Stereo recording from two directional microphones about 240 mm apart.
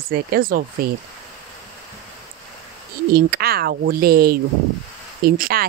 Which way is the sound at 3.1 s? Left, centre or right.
Right.